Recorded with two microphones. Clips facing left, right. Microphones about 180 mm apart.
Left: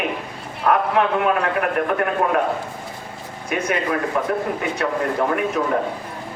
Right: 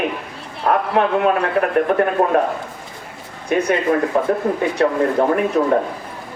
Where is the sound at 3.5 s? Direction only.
30° right (ahead or behind).